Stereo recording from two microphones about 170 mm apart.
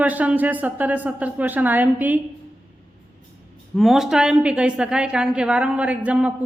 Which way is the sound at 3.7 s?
Centre (ahead or behind).